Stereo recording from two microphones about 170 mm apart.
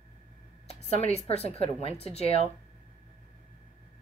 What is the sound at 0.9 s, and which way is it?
A woman's voice, 40° left (ahead or behind).